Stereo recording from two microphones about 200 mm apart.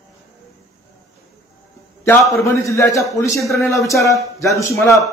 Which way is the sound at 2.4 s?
15° left (ahead or behind).